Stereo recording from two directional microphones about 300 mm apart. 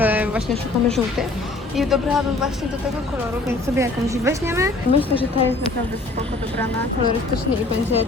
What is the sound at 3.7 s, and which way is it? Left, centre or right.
Speech, centre.